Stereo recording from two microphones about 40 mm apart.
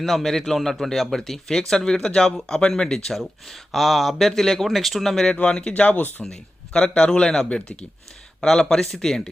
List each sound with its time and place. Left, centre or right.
0.0 s a man's voice: centre
5.3 s speech: left
5.8 s speech: left
6.2 s a man's voice: centre
7.5 s speech: left
8.4 s a man's voice: centre